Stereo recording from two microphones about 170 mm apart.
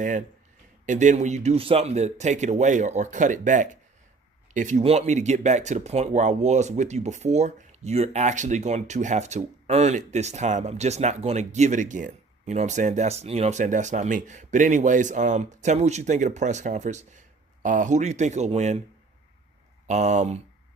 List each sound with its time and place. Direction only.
0.9 s speech: 45° right (ahead or behind)
19.9 s speech: 45° right (ahead or behind)